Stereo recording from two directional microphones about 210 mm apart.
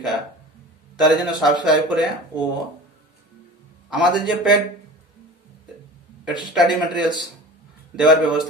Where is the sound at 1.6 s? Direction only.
Centre (ahead or behind).